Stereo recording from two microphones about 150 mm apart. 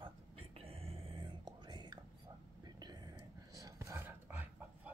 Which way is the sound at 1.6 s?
30° right (ahead or behind).